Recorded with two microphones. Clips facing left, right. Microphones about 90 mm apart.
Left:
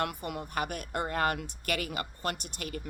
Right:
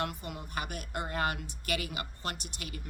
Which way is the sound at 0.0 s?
55° left (ahead or behind).